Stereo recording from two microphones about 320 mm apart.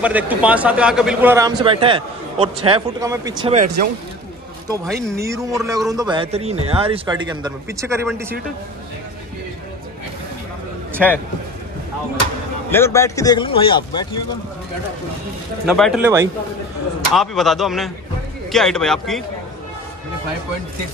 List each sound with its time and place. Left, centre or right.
0.0 s speech: centre; by 3.9 s right
5.1 s speech: centre
10.9 s a sound: centre
12.7 s a man's voice: centre
15.6 s speech: centre